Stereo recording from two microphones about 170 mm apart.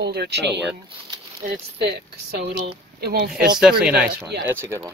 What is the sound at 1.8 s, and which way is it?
Speech, 75° right (ahead or behind).